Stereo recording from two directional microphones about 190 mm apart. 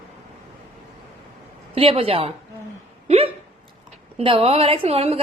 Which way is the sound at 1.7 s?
30° right (ahead or behind).